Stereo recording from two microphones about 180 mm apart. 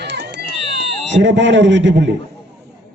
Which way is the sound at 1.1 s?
80° right.